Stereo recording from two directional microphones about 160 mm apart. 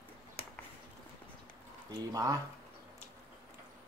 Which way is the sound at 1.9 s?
25° right (ahead or behind).